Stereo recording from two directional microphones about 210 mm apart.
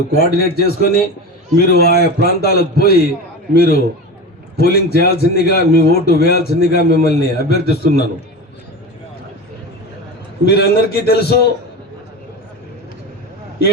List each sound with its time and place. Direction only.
0.2 s a man's voice: 45° left (ahead or behind)
10.4 s a man's voice: 50° left (ahead or behind)